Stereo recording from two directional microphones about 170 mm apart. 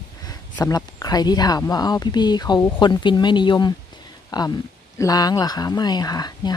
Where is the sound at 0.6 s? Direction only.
20° left (ahead or behind).